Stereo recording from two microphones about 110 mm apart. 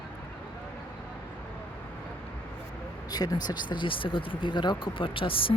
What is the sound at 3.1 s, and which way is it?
Speech, 35° left (ahead or behind).